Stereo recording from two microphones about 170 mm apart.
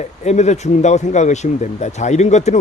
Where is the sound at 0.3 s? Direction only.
40° left (ahead or behind).